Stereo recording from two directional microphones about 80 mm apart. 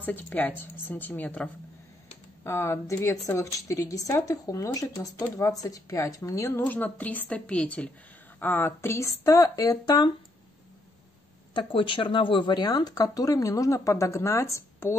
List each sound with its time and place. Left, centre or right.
0.0 s speech: left
2.4 s a woman's voice: left
6.6 s a woman's voice: left
8.4 s a woman's voice: left
11.5 s speech: left